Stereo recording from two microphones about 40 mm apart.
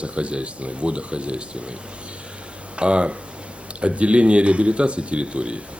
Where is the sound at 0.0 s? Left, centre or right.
Right.